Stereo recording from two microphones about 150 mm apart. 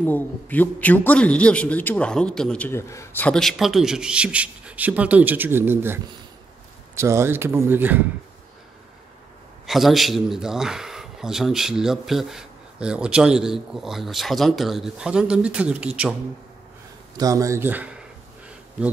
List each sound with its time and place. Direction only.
0.0 s a man's voice: 10° left (ahead or behind)
2.9 s speech: 20° left (ahead or behind)
3.3 s speech: 5° left (ahead or behind); by 5.9 s 15° right (ahead or behind)
7.0 s speech: 20° right (ahead or behind)
9.7 s a man's voice: centre (ahead or behind)
17.2 s speech: 20° right (ahead or behind)